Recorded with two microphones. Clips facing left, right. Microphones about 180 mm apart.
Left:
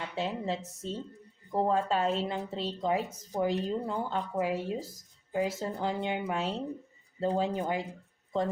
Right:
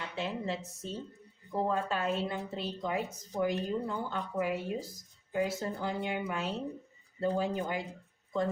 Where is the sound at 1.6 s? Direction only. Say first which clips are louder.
Left 4 dB; 30° left (ahead or behind).